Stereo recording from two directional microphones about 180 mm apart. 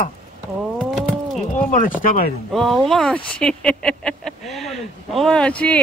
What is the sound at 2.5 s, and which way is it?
Speech, centre (ahead or behind).